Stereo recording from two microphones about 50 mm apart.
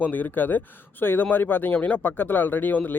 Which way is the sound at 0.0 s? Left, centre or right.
Left.